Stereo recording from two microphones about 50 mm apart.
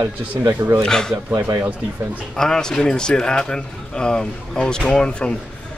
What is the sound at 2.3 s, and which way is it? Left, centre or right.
Speech, centre.